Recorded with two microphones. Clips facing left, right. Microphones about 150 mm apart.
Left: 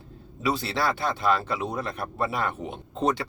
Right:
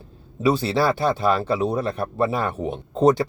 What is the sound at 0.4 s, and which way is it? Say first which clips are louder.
Speech: right 7 dB; 30° right (ahead or behind).